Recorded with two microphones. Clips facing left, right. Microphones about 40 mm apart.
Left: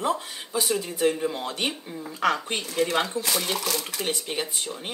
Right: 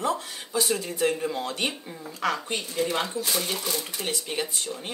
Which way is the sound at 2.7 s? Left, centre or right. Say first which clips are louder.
Left 3 dB; left.